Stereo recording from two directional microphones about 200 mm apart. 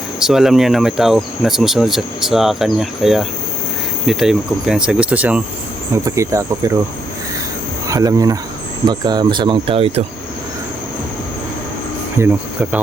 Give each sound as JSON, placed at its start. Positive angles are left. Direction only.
{"t": 0.2, "sound": "speech", "side_deg": 0}
{"t": 7.9, "sound": "speech", "side_deg": -15}
{"t": 12.2, "sound": "speech", "side_deg": -15}